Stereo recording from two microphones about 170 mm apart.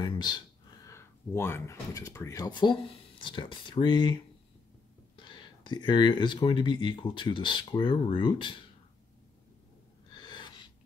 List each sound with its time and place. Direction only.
0.0 s speech: 25° left (ahead or behind)
10.0 s gasp: 25° left (ahead or behind)